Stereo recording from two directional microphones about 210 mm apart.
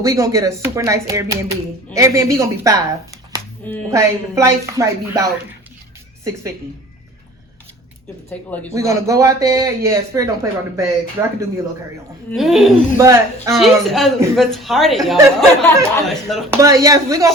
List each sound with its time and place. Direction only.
0.0 s speech: 15° right (ahead or behind)
8.3 s speech: 5° left (ahead or behind)
8.7 s speech: 15° right (ahead or behind)
12.3 s speech: centre (ahead or behind)
13.0 s speech: 15° right (ahead or behind)
13.5 s speech: centre (ahead or behind)
16.5 s speech: 15° right (ahead or behind)